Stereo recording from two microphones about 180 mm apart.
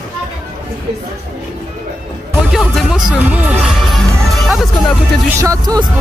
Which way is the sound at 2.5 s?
Centre (ahead or behind).